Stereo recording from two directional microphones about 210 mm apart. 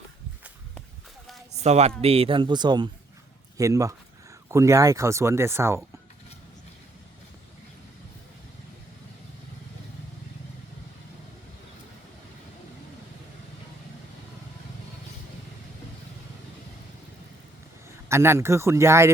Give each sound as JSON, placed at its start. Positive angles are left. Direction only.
{"t": 1.5, "sound": "a man's voice", "side_deg": -30}
{"t": 18.1, "sound": "speech", "side_deg": -10}